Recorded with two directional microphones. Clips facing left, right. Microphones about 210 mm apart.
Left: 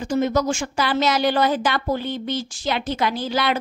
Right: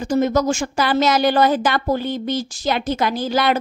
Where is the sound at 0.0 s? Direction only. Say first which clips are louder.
Right 3 dB; 45° right (ahead or behind).